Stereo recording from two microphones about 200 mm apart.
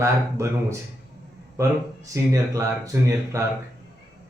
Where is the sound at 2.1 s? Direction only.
15° right (ahead or behind).